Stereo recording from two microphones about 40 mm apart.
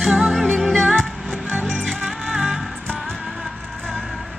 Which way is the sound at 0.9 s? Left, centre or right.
Centre.